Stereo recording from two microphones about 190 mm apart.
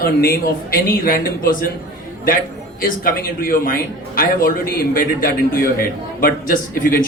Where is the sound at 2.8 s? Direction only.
50° left (ahead or behind).